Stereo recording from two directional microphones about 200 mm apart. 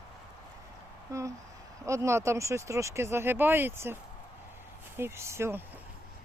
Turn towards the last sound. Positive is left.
turn(degrees=-10)  # may be behind; listen again after turning